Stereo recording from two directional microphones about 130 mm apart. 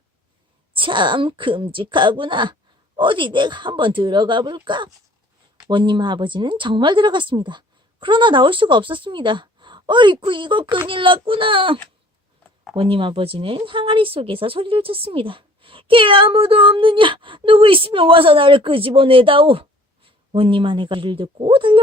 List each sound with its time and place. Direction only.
0.7 s a woman's voice: 40° right (ahead or behind)